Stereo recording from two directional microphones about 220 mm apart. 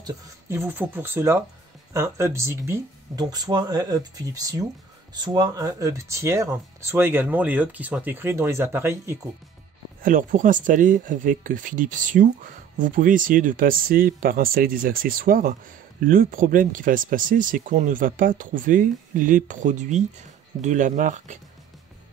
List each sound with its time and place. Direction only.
0.0 s speech: 10° right (ahead or behind)
10.0 s speech: 35° right (ahead or behind)